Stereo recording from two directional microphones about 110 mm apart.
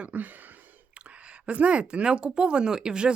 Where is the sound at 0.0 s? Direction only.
15° right (ahead or behind).